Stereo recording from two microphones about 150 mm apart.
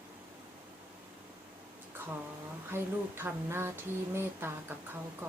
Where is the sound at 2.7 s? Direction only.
15° right (ahead or behind).